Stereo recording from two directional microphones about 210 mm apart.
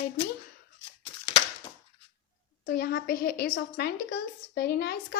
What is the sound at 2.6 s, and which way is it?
A woman's voice, 45° left (ahead or behind).